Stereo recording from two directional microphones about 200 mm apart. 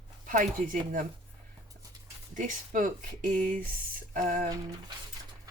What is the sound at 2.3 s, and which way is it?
Speech, 40° right (ahead or behind).